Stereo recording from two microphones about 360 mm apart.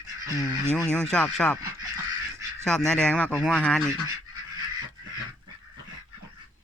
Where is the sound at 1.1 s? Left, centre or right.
Centre.